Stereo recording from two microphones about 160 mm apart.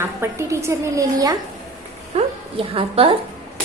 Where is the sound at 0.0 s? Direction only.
15° right (ahead or behind).